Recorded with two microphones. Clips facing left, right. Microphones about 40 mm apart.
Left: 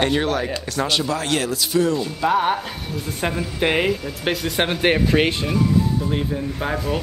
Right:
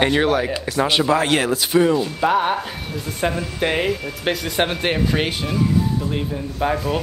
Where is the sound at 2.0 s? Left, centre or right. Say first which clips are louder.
Right 1 dB; centre.